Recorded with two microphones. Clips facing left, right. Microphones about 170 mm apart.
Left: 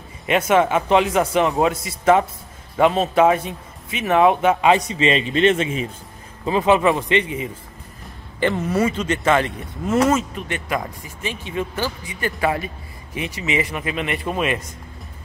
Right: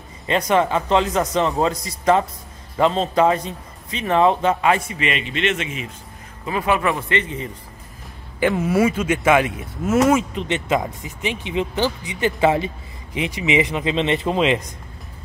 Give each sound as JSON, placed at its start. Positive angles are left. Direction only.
{"t": 0.3, "sound": "speech", "side_deg": 5}
{"t": 8.4, "sound": "speech", "side_deg": -10}
{"t": 10.3, "sound": "speech", "side_deg": -20}